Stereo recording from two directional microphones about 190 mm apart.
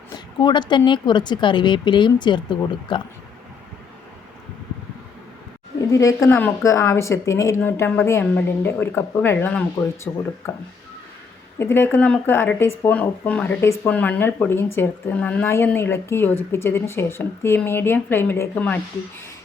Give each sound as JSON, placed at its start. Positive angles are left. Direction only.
{"t": 0.3, "sound": "speech", "side_deg": 25}
{"t": 5.8, "sound": "speech", "side_deg": 15}
{"t": 11.6, "sound": "speech", "side_deg": 10}